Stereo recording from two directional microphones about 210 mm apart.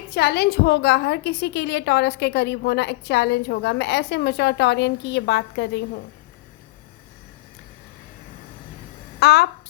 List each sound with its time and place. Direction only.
0.1 s a woman's voice: 50° left (ahead or behind)
9.2 s a woman's voice: 50° left (ahead or behind)